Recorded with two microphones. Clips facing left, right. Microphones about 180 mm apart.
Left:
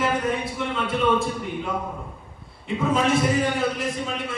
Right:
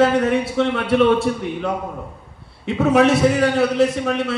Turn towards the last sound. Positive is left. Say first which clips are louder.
# right 7 dB
turn(degrees=-75)  # may be behind; listen again after turning